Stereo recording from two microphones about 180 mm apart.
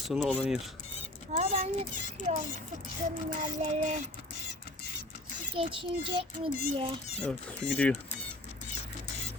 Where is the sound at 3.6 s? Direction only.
40° right (ahead or behind).